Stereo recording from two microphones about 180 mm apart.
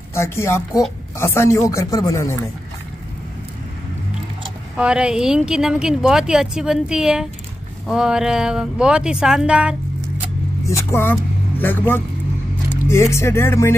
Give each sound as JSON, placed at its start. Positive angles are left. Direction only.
{"t": 0.1, "sound": "speech", "side_deg": 15}
{"t": 4.7, "sound": "speech", "side_deg": -5}
{"t": 10.7, "sound": "speech", "side_deg": 15}